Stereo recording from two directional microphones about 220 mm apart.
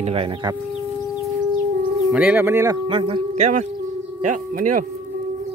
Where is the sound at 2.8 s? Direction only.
25° right (ahead or behind).